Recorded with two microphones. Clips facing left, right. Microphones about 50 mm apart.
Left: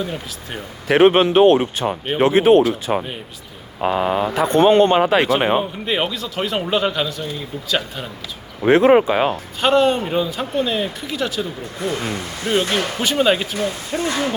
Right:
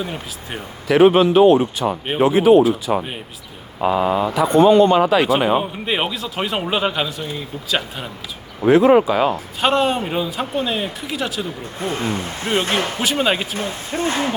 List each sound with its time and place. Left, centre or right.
0.9 s a man's voice: left
2.9 s a man's voice: left
5.5 s a man's voice: centre
8.6 s a man's voice: left
9.6 s a man's voice: centre
11.8 s speech: right
13.0 s a man's voice: centre
13.6 s speech: right